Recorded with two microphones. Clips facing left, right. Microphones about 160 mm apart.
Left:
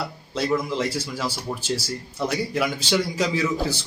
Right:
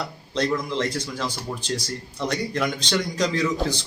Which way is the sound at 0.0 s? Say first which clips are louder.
Right 1 dB; 5° left (ahead or behind).